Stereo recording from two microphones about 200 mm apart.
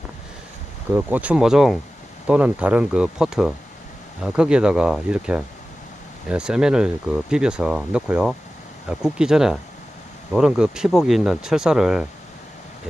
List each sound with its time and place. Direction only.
0.9 s speech: 5° right (ahead or behind)